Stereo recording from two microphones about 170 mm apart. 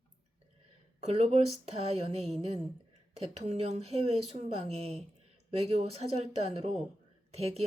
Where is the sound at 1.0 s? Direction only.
40° right (ahead or behind).